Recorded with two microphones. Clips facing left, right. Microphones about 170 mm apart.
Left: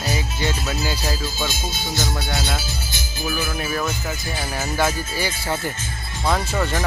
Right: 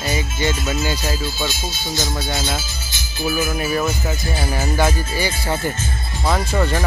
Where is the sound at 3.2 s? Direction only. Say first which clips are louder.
Right 5 dB; 20° right (ahead or behind).